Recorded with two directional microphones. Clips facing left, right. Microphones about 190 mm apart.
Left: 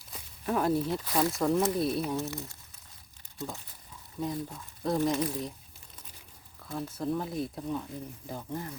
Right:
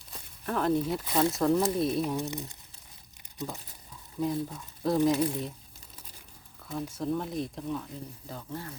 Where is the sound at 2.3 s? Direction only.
15° right (ahead or behind).